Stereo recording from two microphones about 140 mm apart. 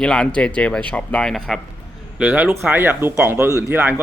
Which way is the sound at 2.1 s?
10° right (ahead or behind).